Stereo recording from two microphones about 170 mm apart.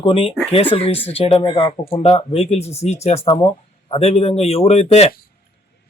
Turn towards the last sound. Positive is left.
turn(degrees=35)  # may be behind; listen again after turning